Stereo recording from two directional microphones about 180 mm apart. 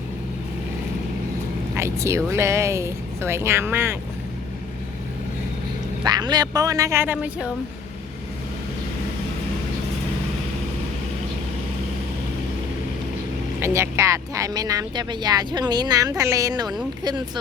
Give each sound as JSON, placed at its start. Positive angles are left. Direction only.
{"t": 1.7, "sound": "speech", "side_deg": -15}
{"t": 6.1, "sound": "speech", "side_deg": -20}
{"t": 13.6, "sound": "speech", "side_deg": -15}